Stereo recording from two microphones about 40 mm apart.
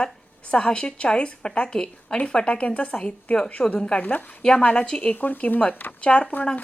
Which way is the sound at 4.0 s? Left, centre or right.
Left.